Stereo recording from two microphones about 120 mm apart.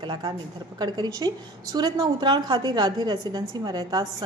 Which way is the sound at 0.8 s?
35° right (ahead or behind).